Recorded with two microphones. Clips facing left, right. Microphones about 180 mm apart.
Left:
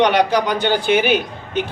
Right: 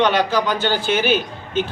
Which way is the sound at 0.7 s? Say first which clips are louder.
Left 6 dB; 60° left (ahead or behind).